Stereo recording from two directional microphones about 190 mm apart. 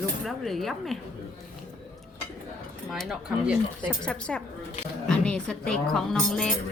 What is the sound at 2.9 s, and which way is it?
A woman's voice, centre (ahead or behind).